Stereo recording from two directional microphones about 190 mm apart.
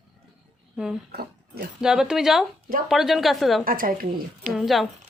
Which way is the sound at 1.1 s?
55° right (ahead or behind).